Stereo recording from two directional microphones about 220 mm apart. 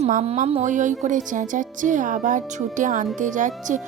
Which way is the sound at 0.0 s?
30° right (ahead or behind).